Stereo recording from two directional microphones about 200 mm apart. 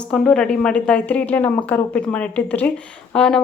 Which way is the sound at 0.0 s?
5° left (ahead or behind).